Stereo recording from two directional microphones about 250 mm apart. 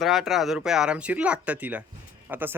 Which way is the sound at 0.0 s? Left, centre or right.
Centre.